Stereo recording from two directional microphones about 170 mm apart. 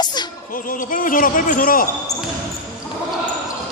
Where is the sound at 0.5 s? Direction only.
55° left (ahead or behind).